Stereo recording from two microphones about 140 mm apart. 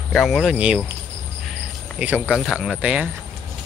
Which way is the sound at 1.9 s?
10° right (ahead or behind).